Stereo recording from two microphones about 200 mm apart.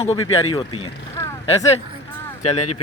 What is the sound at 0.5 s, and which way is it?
Speech, 25° left (ahead or behind).